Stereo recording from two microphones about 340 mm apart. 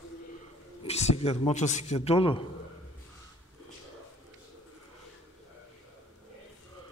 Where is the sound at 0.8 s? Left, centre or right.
Centre.